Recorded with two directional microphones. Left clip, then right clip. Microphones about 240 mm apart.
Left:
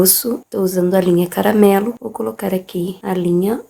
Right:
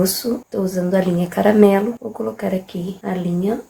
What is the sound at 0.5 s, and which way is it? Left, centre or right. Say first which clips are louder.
Speech: left 5 dB; left.